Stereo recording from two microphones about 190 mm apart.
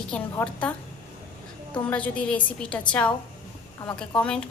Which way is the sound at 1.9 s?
5° left (ahead or behind).